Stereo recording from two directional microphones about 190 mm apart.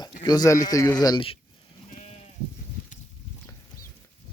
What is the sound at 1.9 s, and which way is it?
Sheep, 35° left (ahead or behind).